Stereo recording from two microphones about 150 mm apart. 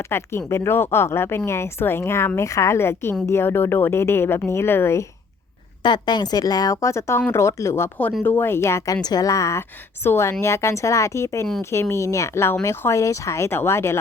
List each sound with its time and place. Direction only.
0.0 s speech: 15° left (ahead or behind)
5.8 s speech: 30° left (ahead or behind)